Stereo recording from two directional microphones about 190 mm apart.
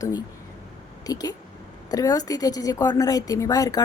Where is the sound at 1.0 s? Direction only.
20° left (ahead or behind).